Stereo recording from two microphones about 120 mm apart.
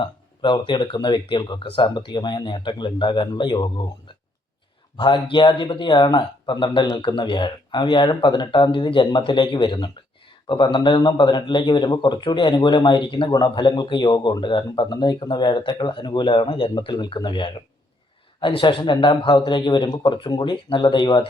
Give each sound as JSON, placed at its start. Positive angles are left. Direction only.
{"t": 0.0, "sound": "a man's voice", "side_deg": 40}
{"t": 4.9, "sound": "a man's voice", "side_deg": 40}